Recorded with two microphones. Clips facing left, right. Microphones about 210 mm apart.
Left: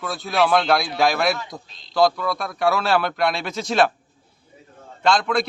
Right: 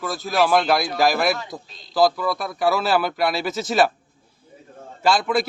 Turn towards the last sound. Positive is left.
turn(degrees=-5)  # may be behind; listen again after turning